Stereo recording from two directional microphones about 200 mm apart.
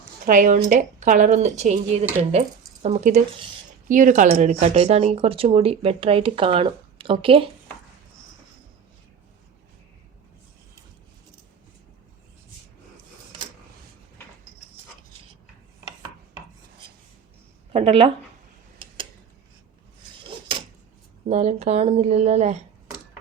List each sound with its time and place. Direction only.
0.3 s speech: 40° right (ahead or behind)
17.7 s speech: 30° right (ahead or behind)
21.2 s speech: 35° right (ahead or behind)